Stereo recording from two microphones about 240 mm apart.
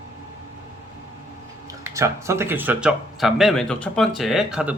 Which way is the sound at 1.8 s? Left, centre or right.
Centre.